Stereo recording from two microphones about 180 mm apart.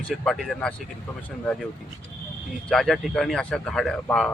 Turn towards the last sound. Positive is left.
turn(degrees=5)  # may be behind; listen again after turning